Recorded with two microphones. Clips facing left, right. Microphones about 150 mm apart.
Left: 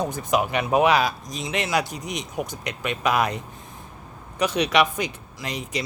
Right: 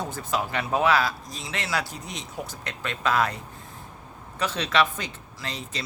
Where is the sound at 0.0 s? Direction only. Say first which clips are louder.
Left 5 dB; 15° left (ahead or behind).